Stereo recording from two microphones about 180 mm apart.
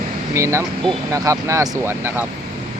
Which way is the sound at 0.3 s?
15° right (ahead or behind).